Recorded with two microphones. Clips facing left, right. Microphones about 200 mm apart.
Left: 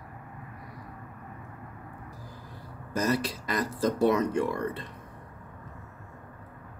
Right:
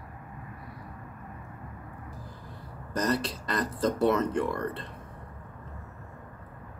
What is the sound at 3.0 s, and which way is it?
Speech, 10° left (ahead or behind).